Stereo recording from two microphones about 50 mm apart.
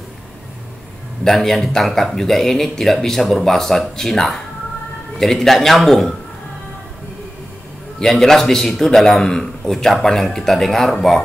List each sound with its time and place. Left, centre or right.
1.2 s a man's voice: centre
8.0 s a man's voice: centre